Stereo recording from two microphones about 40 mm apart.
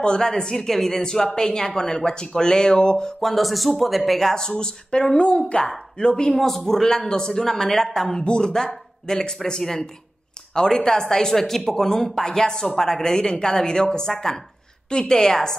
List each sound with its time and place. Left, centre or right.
0.0 s speech: centre
3.2 s speech: centre
5.2 s speech: left
5.9 s speech: centre
6.3 s speech: centre